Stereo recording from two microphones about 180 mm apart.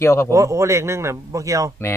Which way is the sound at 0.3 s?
15° right (ahead or behind).